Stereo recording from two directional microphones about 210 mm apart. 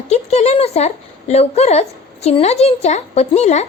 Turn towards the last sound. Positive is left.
turn(degrees=30)  # may be behind; listen again after turning